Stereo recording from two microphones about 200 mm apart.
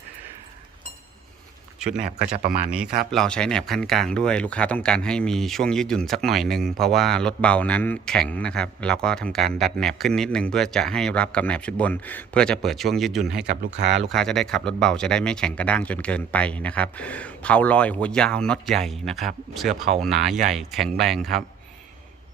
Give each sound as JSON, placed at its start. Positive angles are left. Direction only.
{"t": 2.6, "sound": "speech", "side_deg": -5}
{"t": 13.6, "sound": "speech", "side_deg": -65}
{"t": 14.1, "sound": "speech", "side_deg": 5}